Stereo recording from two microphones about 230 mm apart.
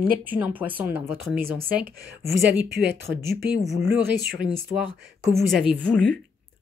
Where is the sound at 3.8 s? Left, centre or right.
Right.